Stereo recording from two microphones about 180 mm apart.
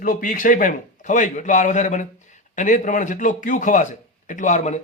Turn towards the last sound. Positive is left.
turn(degrees=40)  # may be behind; listen again after turning